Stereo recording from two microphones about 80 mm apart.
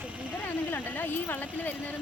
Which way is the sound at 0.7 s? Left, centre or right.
Left.